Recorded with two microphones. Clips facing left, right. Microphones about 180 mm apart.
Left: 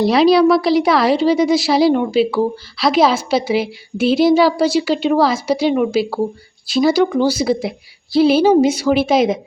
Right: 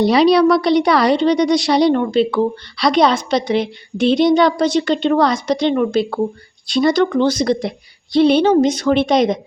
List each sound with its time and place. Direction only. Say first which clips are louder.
0.0 s a woman's voice: even; centre (ahead or behind)